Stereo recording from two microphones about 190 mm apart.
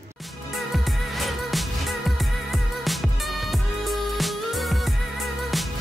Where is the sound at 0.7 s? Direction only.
Centre (ahead or behind).